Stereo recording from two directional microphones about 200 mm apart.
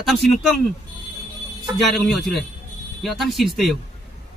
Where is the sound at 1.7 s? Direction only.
Centre (ahead or behind).